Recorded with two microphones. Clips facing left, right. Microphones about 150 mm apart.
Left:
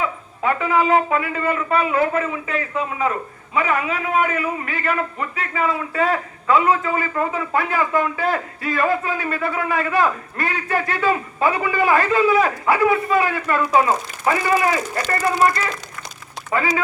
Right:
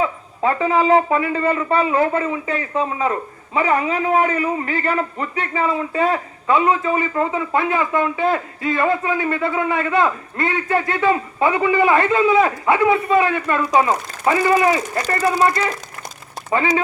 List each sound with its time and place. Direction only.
0.0 s a man's voice: 30° right (ahead or behind)